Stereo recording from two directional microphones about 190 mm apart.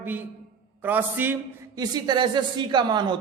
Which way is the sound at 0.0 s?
10° right (ahead or behind).